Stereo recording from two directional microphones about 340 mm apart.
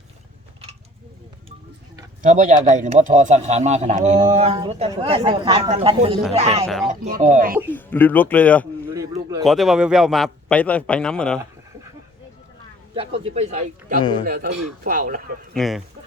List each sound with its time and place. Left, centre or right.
2.2 s speech: right
7.7 s a man's voice: centre
9.0 s a sound: centre
9.4 s a man's voice: centre
13.0 s speech: centre
14.0 s a man's voice: centre
14.3 s speech: right
15.5 s a man's voice: centre